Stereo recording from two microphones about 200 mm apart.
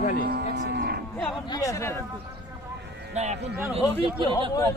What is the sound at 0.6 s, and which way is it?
Speech, 60° right (ahead or behind).